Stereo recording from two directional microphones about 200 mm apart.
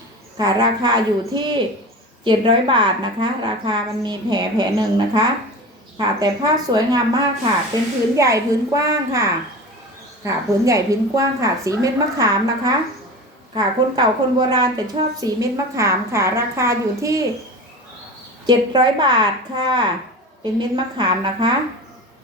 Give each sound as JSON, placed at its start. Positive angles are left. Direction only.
{"t": 0.3, "sound": "a woman's voice", "side_deg": -20}
{"t": 7.7, "sound": "a woman's voice", "side_deg": 15}
{"t": 8.1, "sound": "a woman's voice", "side_deg": -15}
{"t": 18.4, "sound": "a woman's voice", "side_deg": -20}